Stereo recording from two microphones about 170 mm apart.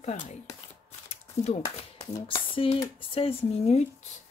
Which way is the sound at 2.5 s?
35° left (ahead or behind).